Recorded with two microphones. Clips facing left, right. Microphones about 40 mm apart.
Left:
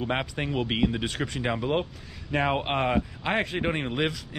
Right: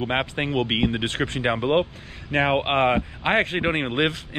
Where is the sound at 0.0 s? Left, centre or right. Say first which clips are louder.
Right 4 dB; right.